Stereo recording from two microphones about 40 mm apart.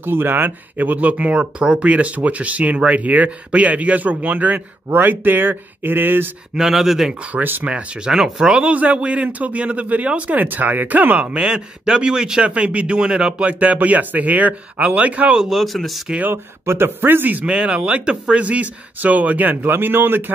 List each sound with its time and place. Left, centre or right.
0.0 s speech: right
0.8 s speech: right
6.5 s speech: centre
7.3 s speech: right
7.6 s speech: right
8.1 s speech: centre
8.5 s speech: right
11.3 s speech: centre
12.4 s speech: right
15.5 s speech: centre
16.6 s speech: right
17.5 s speech: right
19.6 s speech: right